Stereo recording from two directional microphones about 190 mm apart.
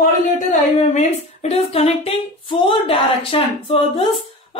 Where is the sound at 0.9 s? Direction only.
35° left (ahead or behind).